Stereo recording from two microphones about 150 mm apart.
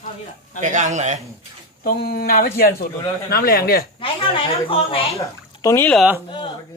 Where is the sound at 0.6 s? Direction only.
55° right (ahead or behind).